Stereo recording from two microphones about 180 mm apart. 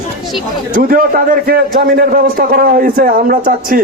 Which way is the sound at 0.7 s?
50° right (ahead or behind).